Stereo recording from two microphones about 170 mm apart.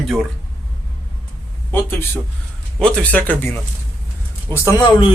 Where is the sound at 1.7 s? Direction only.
15° left (ahead or behind).